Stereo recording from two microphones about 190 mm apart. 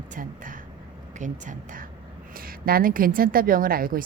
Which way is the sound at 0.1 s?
45° right (ahead or behind).